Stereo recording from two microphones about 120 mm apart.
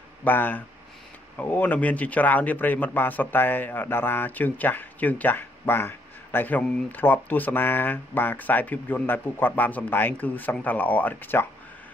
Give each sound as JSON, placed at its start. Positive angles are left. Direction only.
{"t": 0.2, "sound": "a man's voice", "side_deg": 15}